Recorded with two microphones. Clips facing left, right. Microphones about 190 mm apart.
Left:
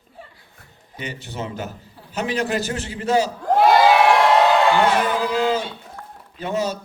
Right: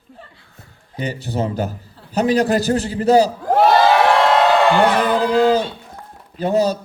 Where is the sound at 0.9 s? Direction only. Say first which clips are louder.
Right 8 dB; 35° right (ahead or behind).